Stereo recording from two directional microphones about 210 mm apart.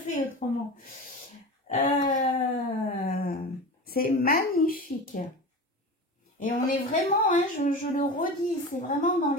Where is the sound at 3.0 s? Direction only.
45° left (ahead or behind).